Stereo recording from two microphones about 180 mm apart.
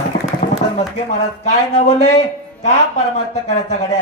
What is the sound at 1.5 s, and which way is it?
Speech, 40° left (ahead or behind).